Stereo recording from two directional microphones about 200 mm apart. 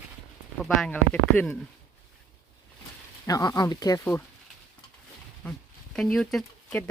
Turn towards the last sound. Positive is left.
turn(degrees=5)  # may be behind; listen again after turning